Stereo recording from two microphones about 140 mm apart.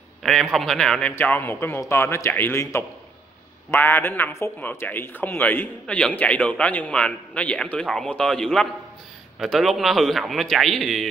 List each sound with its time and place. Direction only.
0.2 s a man's voice: centre (ahead or behind)